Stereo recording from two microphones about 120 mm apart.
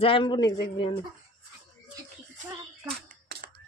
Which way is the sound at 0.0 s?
45° left (ahead or behind).